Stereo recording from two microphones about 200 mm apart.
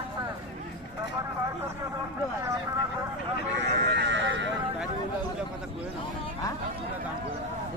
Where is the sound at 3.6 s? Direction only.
60° right (ahead or behind).